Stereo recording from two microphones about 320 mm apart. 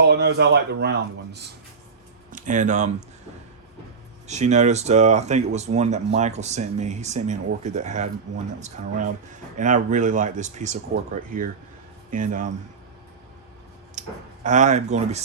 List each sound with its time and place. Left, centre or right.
0.0 s speech: right
4.3 s speech: right
14.0 s a sound: right
14.4 s speech: right